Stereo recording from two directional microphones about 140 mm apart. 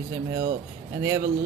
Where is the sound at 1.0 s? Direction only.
20° right (ahead or behind).